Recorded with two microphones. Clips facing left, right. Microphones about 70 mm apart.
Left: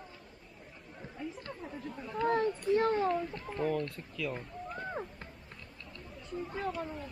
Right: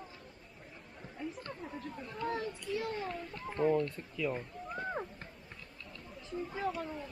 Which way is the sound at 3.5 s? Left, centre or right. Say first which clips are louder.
Right 4 dB; centre.